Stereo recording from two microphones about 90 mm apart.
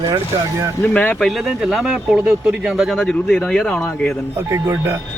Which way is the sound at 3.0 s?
10° left (ahead or behind).